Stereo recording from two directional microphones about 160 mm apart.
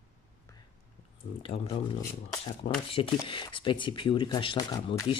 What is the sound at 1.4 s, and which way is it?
Speech, 35° left (ahead or behind).